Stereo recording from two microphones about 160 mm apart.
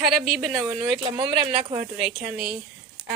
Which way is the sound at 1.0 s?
40° right (ahead or behind).